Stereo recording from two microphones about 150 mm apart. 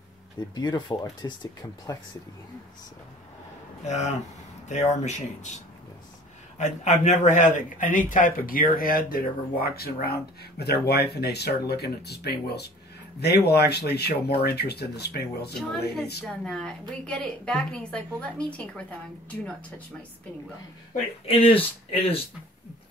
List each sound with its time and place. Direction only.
0.6 s speech: 30° left (ahead or behind)
3.8 s speech: 50° left (ahead or behind)
6.6 s a man's voice: 50° left (ahead or behind); by 15.5 s 90° left
16.3 s a woman's voice: 5° left (ahead or behind)
21.3 s speech: 40° left (ahead or behind)